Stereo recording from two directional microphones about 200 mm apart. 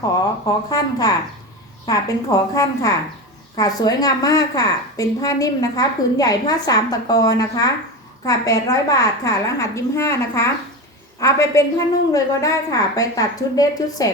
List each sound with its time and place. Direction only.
0.0 s a woman's voice: 20° left (ahead or behind)